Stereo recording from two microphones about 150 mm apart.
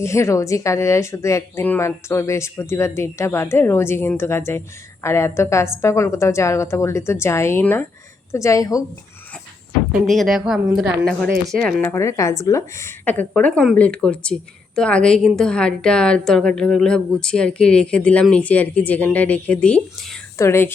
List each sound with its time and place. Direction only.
0.0 s speech: 20° left (ahead or behind)
10.1 s a woman's voice: centre (ahead or behind)
11.8 s a woman's voice: 15° left (ahead or behind)
20.4 s a woman's voice: 15° left (ahead or behind)